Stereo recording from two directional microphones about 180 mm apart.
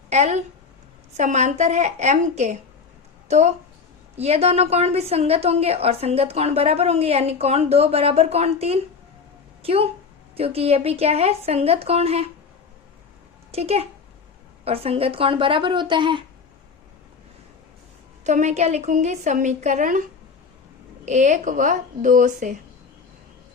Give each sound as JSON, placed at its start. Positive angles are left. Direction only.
{"t": 0.1, "sound": "a woman's voice", "side_deg": -40}
{"t": 13.5, "sound": "a woman's voice", "side_deg": -35}
{"t": 18.2, "sound": "a woman's voice", "side_deg": -40}